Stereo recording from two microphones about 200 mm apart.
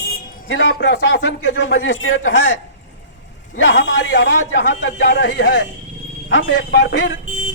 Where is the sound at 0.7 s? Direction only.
60° left (ahead or behind).